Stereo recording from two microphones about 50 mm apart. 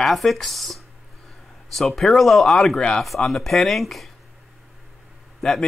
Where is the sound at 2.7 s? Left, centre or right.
Centre.